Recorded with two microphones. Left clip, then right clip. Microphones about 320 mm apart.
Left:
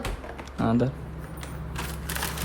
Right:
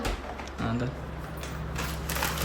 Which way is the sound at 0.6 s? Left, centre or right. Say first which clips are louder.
Left 8 dB; centre.